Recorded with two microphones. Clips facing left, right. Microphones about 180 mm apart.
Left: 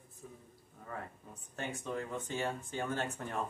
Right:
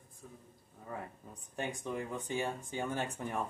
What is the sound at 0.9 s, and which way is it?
Speech, 15° right (ahead or behind).